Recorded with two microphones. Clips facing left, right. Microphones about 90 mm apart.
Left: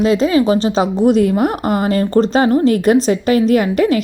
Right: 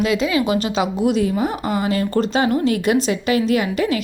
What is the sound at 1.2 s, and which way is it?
Speech, 50° left (ahead or behind).